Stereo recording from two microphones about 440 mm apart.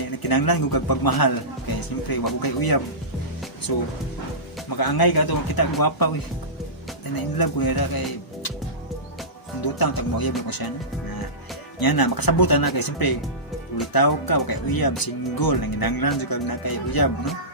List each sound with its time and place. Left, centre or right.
0.2 s speech: left
7.3 s speech: left
9.7 s speech: left
11.8 s speech: left